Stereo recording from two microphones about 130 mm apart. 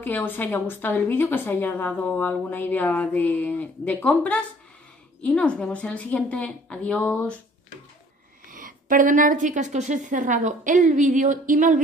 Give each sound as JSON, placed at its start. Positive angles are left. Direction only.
{"t": 0.0, "sound": "a woman's voice", "side_deg": 15}
{"t": 8.5, "sound": "a woman's voice", "side_deg": -90}